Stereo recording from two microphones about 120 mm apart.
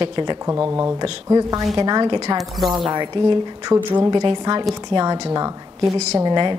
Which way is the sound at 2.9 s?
35° right (ahead or behind).